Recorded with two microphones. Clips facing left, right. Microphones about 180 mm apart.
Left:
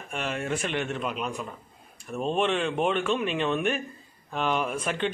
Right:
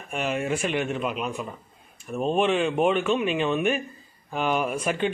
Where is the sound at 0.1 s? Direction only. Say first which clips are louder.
Right 4 dB; 5° right (ahead or behind).